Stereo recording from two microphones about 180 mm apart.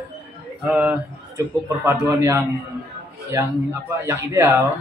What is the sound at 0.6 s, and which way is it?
A man's voice, 5° right (ahead or behind).